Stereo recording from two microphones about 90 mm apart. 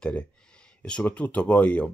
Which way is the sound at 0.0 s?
10° left (ahead or behind).